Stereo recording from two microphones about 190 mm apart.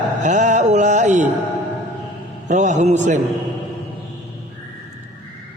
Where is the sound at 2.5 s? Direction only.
40° right (ahead or behind).